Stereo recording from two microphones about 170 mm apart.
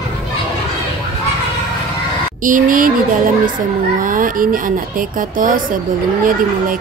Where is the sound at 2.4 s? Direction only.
55° right (ahead or behind).